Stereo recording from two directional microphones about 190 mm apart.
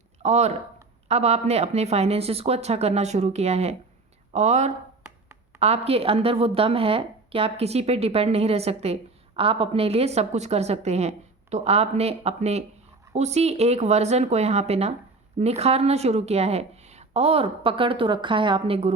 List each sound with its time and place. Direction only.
0.2 s a woman's voice: 35° right (ahead or behind)